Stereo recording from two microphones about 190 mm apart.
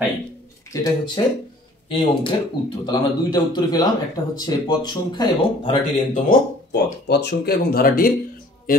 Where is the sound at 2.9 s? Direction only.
20° left (ahead or behind).